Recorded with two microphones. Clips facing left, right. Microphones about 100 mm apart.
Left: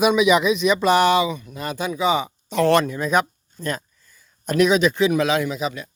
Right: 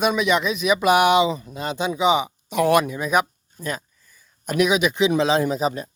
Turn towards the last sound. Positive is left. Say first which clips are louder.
# right 3 dB
turn(degrees=-40)  # may be behind; listen again after turning